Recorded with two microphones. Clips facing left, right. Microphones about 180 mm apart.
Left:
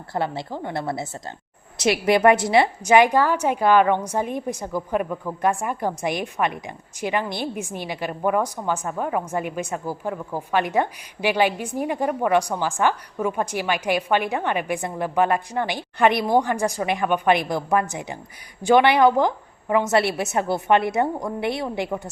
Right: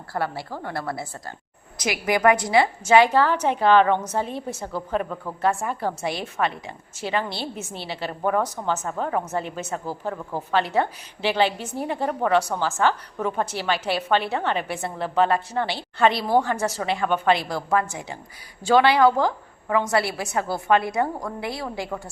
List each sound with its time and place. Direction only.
0.1 s a woman's voice: 20° left (ahead or behind)